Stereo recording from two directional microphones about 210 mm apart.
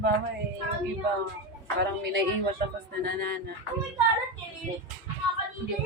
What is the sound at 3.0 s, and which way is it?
Speech, 45° right (ahead or behind).